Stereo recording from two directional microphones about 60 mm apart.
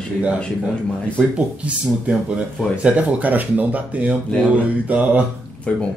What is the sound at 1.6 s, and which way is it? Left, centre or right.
Speech, centre.